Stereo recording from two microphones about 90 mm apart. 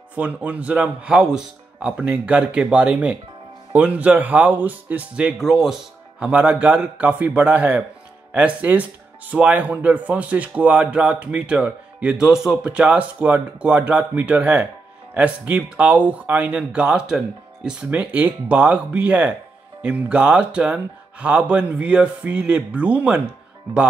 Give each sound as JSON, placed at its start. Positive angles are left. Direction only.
{"t": 0.1, "sound": "speech", "side_deg": -15}